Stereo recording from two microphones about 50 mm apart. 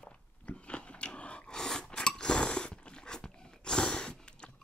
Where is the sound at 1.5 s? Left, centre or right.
Centre.